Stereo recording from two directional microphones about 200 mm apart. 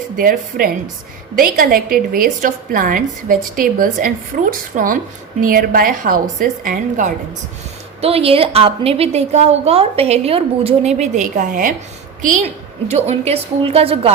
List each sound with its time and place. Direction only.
0.2 s a woman's voice: 45° right (ahead or behind)
8.0 s a woman's voice: 30° right (ahead or behind)